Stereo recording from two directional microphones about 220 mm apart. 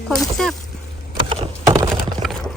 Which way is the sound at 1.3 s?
20° right (ahead or behind).